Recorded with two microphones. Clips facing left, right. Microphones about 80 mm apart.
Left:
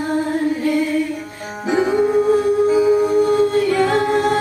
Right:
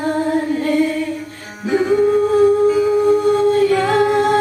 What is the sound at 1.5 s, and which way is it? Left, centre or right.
Music, centre.